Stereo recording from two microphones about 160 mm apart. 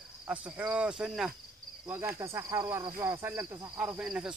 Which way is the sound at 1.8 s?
15° right (ahead or behind).